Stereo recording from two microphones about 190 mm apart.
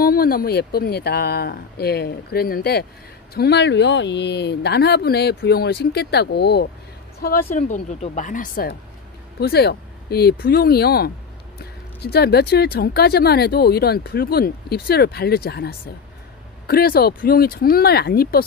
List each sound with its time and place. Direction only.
0.0 s speech: 50° left (ahead or behind)
7.5 s speech: 40° left (ahead or behind)
9.4 s speech: 55° left (ahead or behind)